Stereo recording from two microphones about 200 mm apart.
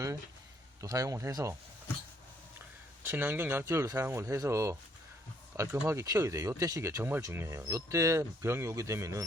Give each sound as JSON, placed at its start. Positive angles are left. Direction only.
{"t": 0.8, "sound": "speech", "side_deg": -15}
{"t": 3.0, "sound": "speech", "side_deg": -10}